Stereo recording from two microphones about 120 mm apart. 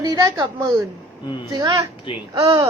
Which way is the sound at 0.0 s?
35° right (ahead or behind).